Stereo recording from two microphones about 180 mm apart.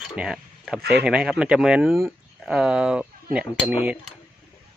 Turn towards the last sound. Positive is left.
turn(degrees=-10)  # may be behind; listen again after turning